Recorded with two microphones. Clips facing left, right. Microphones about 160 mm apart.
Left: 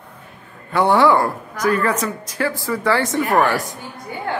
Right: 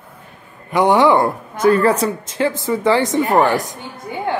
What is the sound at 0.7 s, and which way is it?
A woman's voice, 15° right (ahead or behind).